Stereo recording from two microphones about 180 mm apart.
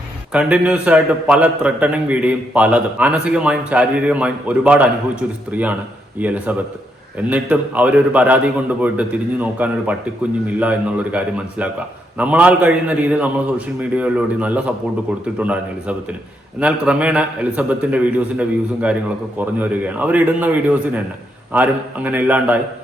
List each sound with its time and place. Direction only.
0.3 s a man's voice: 5° right (ahead or behind)